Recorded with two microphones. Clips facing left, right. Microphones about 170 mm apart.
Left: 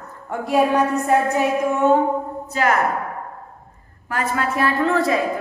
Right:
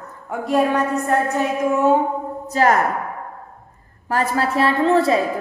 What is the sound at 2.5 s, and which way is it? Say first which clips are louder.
Speech: right 3 dB; 40° right (ahead or behind).